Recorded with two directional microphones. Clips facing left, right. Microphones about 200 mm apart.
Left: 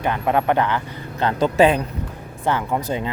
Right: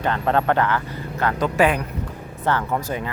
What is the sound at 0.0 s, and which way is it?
Speech, 15° left (ahead or behind).